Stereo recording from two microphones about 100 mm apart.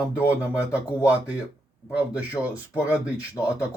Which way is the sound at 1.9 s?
15° right (ahead or behind).